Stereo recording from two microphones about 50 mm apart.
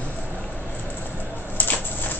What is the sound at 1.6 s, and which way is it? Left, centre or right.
Shuffling cards, left.